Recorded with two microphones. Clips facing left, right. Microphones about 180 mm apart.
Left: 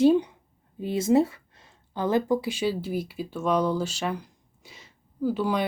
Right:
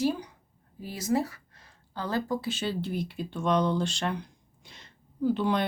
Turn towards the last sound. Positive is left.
turn(degrees=5)  # may be behind; listen again after turning